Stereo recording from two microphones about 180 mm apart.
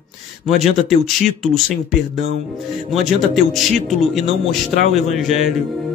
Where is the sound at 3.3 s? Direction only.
Centre (ahead or behind).